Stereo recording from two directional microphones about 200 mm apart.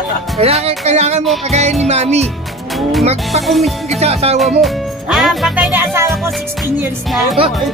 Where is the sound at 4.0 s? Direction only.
30° right (ahead or behind).